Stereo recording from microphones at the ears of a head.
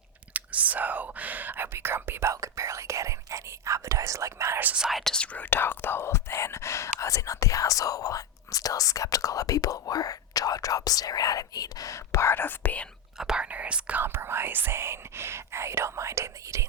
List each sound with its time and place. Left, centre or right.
0.3 s speech: right
5.4 s speech: left
13.5 s speech: right